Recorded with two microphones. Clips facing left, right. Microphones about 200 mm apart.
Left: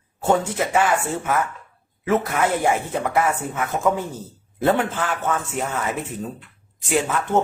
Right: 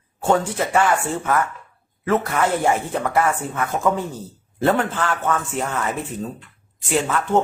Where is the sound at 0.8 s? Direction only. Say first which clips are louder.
Right 1 dB; 10° left (ahead or behind).